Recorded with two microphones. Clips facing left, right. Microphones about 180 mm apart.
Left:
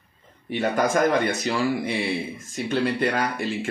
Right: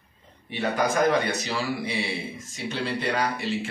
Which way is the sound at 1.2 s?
50° left (ahead or behind).